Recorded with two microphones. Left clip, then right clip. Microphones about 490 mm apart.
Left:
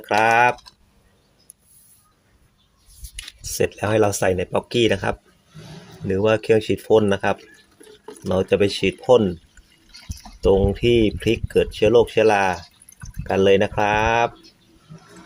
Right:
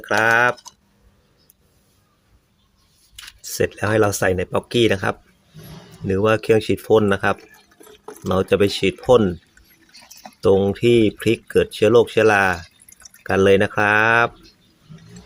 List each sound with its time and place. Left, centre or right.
0.0 s speech: right
3.5 s speech: right
10.4 s speech: right